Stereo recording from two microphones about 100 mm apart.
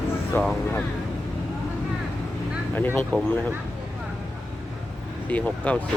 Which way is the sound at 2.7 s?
20° left (ahead or behind).